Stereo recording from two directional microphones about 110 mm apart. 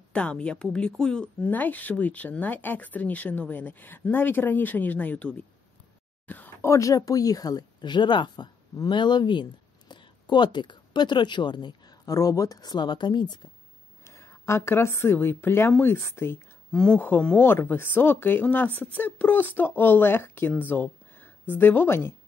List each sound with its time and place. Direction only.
0.1 s speech: 10° left (ahead or behind)
6.2 s a sound: 15° left (ahead or behind)
6.7 s speech: 30° left (ahead or behind)
14.0 s a woman's voice: 25° left (ahead or behind)
16.7 s speech: 10° left (ahead or behind)